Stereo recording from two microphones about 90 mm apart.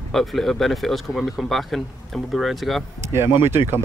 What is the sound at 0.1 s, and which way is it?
Speech, centre (ahead or behind).